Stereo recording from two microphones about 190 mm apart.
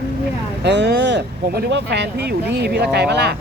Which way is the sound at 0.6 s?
65° right (ahead or behind).